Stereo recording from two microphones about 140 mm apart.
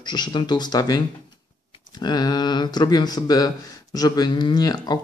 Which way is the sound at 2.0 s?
30° left (ahead or behind).